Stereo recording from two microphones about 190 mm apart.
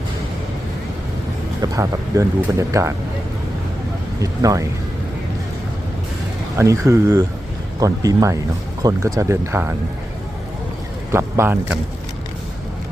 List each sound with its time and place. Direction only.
1.6 s speech: 15° right (ahead or behind)
4.2 s speech: 15° right (ahead or behind)
6.6 s speech: 15° right (ahead or behind)
11.1 s vehicle: 15° right (ahead or behind)